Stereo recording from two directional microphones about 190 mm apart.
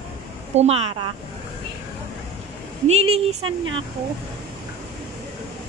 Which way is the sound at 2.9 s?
35° right (ahead or behind).